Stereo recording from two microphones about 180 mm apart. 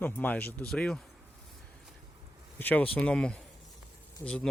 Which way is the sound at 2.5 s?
10° left (ahead or behind).